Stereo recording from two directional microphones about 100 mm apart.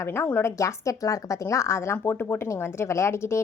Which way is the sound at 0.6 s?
30° left (ahead or behind).